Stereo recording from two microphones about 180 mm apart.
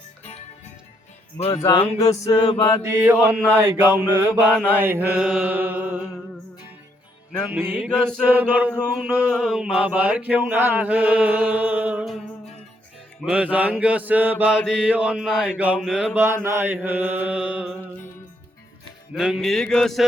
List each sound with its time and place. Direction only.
1.4 s speech: 35° left (ahead or behind)
2.0 s mantra: 20° left (ahead or behind)
2.8 s mantra: 15° right (ahead or behind)
7.5 s mantra: 5° right (ahead or behind)
13.2 s mantra: 5° right (ahead or behind)
19.1 s mantra: centre (ahead or behind)